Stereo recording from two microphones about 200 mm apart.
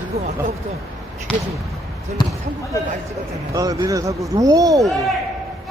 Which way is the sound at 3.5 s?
15° right (ahead or behind).